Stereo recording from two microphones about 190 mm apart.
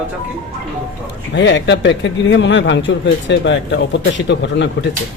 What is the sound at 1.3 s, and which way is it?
A man's voice, 70° left (ahead or behind).